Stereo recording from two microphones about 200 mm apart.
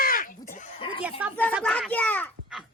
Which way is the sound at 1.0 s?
10° right (ahead or behind).